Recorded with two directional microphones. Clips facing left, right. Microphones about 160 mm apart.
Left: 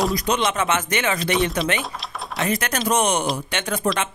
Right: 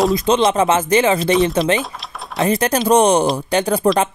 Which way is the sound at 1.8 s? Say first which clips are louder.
Right 3 dB; centre (ahead or behind).